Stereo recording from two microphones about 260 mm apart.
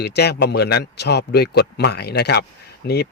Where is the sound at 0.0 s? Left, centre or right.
Left.